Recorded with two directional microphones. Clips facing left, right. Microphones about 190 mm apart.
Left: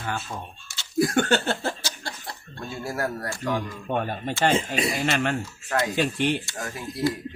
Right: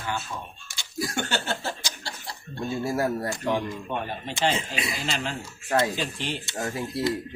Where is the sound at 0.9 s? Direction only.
55° left (ahead or behind).